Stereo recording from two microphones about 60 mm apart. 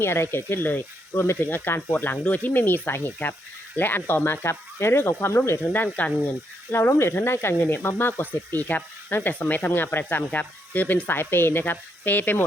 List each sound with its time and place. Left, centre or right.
0.0 s speech: left
5.7 s speech: left
6.7 s speech: left
11.2 s speech: left